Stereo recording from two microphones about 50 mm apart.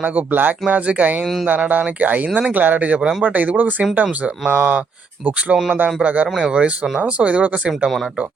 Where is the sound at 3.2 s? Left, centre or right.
Right.